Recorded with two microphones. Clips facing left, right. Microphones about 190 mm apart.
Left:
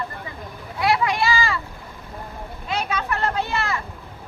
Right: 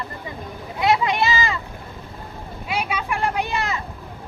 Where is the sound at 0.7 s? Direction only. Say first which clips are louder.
Right 1 dB; 20° right (ahead or behind).